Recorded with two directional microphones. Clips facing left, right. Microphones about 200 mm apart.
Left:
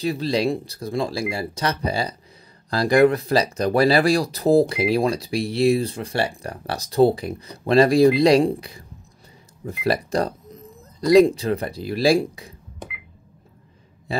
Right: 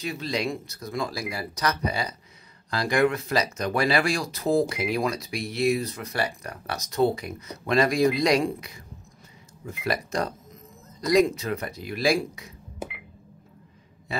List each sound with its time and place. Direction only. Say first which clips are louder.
0.0 s speech: left 7 dB; 35° left (ahead or behind)
12.8 s telephone dialing: right 3 dB; 5° right (ahead or behind)